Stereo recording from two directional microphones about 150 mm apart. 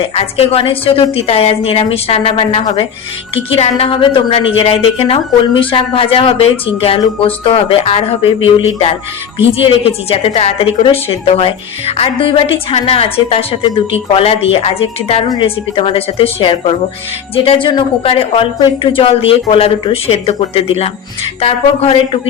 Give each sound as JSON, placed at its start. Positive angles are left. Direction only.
{"t": 0.1, "sound": "a woman's voice", "side_deg": 40}